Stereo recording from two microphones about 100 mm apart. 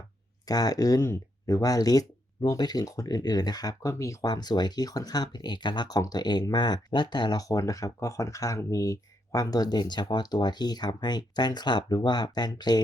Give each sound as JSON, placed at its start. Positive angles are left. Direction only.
{"t": 0.4, "sound": "speech", "side_deg": 40}